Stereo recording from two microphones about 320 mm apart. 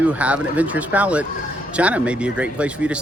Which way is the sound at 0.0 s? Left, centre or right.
Centre.